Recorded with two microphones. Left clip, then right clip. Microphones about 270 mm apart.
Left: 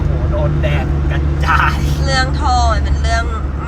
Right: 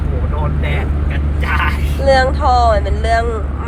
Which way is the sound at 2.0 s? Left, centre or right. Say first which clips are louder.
Right 5 dB; right.